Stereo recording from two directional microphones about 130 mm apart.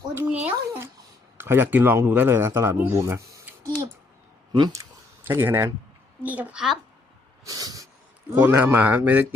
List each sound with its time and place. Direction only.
0.1 s a man's voice: 20° right (ahead or behind)
5.2 s a man's voice: 15° right (ahead or behind)
7.4 s snort: 30° right (ahead or behind)
8.4 s a man's voice: 15° right (ahead or behind)